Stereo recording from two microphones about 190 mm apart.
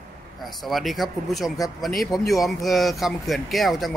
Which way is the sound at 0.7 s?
Centre (ahead or behind).